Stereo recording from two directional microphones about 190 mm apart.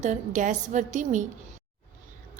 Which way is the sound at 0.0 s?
40° right (ahead or behind).